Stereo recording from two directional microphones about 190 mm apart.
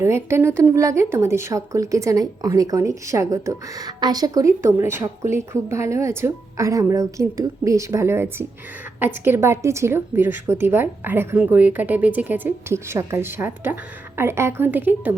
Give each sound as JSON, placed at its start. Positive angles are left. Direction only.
{"t": 0.0, "sound": "speech", "side_deg": -15}